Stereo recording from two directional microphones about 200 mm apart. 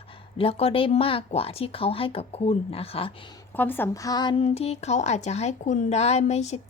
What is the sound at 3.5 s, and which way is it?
A woman's voice, 10° left (ahead or behind).